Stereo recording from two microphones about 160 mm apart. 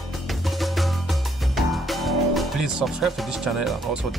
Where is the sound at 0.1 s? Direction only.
Centre (ahead or behind).